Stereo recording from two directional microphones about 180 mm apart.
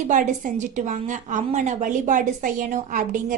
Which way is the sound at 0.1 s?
45° right (ahead or behind).